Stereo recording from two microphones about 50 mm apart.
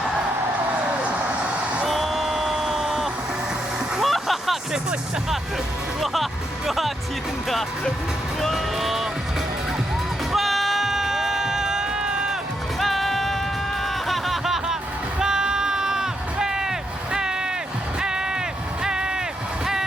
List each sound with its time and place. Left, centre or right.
1.0 s vehicle: right
1.9 s a sound: centre
4.0 s vehicle: centre
6.7 s speech: centre
8.4 s music: centre
10.3 s music: centre
12.8 s music: centre
13.8 s a sound: centre